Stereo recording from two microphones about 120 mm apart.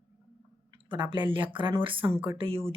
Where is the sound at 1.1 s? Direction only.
45° right (ahead or behind).